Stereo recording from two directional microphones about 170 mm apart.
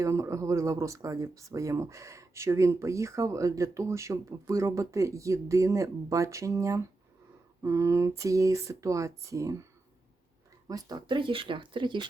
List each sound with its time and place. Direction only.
0.0 s speech: 15° right (ahead or behind)
10.7 s speech: 20° right (ahead or behind)